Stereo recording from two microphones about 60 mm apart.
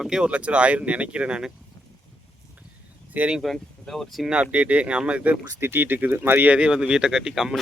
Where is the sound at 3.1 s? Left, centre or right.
Right.